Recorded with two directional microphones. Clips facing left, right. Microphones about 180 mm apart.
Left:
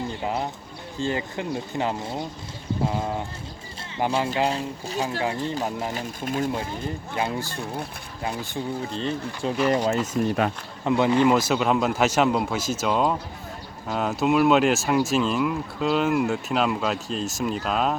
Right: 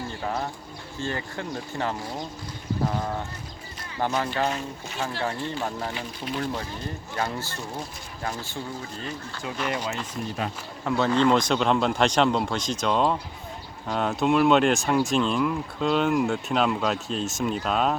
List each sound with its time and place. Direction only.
0.2 s speech: 20° left (ahead or behind)
3.9 s speech: 25° left (ahead or behind)
5.2 s speech: 15° left (ahead or behind)
5.9 s speech: 45° left (ahead or behind)
7.3 s speech: 15° left (ahead or behind)
9.0 s speech: 30° left (ahead or behind)
10.2 s speech: 65° left (ahead or behind)
10.8 s speech: 15° left (ahead or behind)